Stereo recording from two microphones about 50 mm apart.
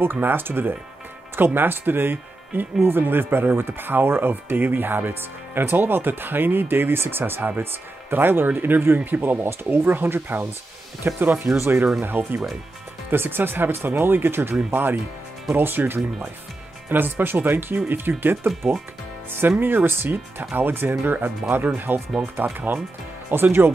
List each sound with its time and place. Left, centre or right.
0.0 s speech: right
19.6 s speech: right